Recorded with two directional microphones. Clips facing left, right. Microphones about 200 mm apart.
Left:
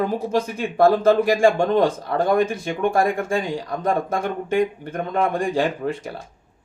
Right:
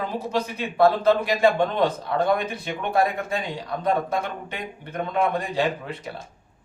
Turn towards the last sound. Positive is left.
turn(degrees=45)  # may be behind; listen again after turning